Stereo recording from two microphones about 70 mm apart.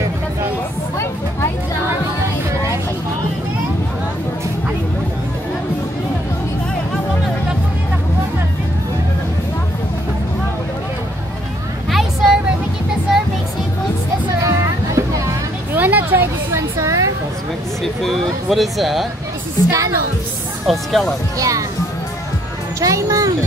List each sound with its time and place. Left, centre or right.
11.9 s vehicle: centre
14.4 s music: right
15.7 s a sound: right
16.5 s a sound: right
18.0 s a sound: centre
19.7 s speech: right
20.6 s speech: centre
21.4 s speech: right
22.8 s speech: right